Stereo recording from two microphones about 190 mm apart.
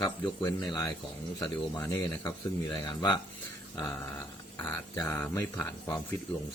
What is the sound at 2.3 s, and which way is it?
Speech, 25° left (ahead or behind).